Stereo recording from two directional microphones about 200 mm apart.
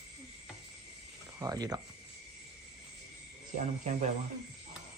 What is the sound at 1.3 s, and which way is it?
Speech, 20° right (ahead or behind).